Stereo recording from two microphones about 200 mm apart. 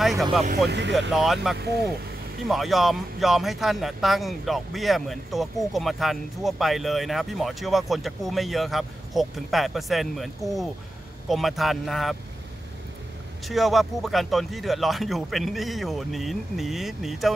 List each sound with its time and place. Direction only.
0.0 s speech: centre (ahead or behind)
0.7 s speech: 60° right (ahead or behind)
1.1 s speech: centre (ahead or behind)
1.6 s speech: 55° right (ahead or behind)
2.4 s speech: centre (ahead or behind)
13.5 s speech: centre (ahead or behind)